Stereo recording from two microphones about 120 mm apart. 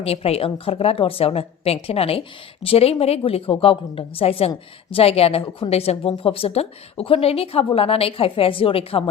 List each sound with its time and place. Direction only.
0.0 s a woman's voice: 55° left (ahead or behind)